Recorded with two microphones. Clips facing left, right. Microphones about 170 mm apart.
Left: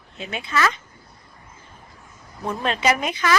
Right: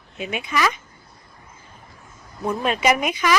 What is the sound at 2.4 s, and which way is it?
Speech, 10° right (ahead or behind).